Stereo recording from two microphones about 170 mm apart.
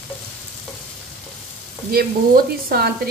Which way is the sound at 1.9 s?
60° right (ahead or behind).